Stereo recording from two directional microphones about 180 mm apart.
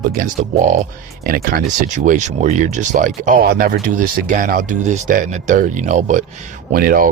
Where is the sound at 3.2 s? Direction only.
55° right (ahead or behind).